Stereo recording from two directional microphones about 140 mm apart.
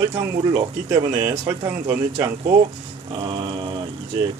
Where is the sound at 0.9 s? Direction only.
25° right (ahead or behind).